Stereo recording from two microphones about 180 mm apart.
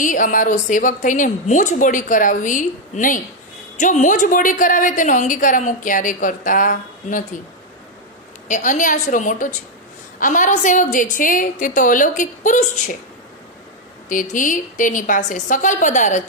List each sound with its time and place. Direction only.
0.0 s a woman's voice: 45° left (ahead or behind)
8.4 s a woman's voice: 45° left (ahead or behind)
14.1 s a woman's voice: 45° left (ahead or behind)